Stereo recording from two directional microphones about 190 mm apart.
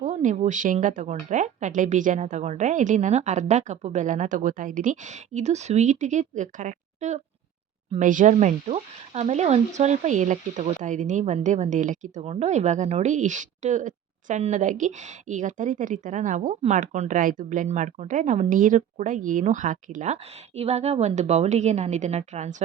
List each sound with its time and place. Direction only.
0.0 s speech: 40° right (ahead or behind)